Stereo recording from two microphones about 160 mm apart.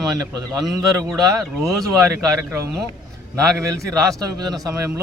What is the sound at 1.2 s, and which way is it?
A man's voice, 20° right (ahead or behind).